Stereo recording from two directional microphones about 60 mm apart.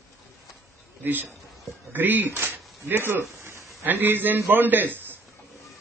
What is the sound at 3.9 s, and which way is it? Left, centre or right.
Speech, right.